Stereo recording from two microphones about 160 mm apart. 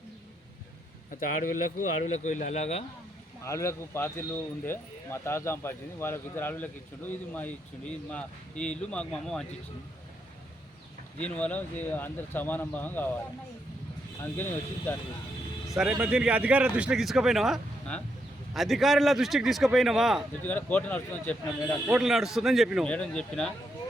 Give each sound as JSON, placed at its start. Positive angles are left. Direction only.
{"t": 1.1, "sound": "speech", "side_deg": 60}
{"t": 3.4, "sound": "speech", "side_deg": 15}
{"t": 11.2, "sound": "speech", "side_deg": 10}
{"t": 14.3, "sound": "speech", "side_deg": 15}
{"t": 15.7, "sound": "speech", "side_deg": -5}
{"t": 20.4, "sound": "speech", "side_deg": 10}
{"t": 21.8, "sound": "speech", "side_deg": -5}